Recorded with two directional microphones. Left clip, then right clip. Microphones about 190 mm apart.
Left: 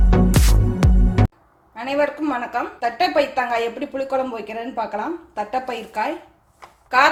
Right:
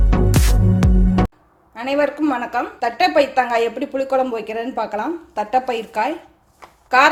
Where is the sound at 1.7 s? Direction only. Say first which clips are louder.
Right 2 dB; 40° right (ahead or behind).